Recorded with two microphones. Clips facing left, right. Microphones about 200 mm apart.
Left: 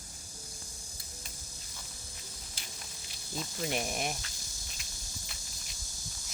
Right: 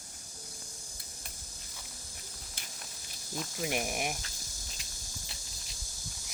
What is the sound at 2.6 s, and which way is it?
Biting, 55° right (ahead or behind).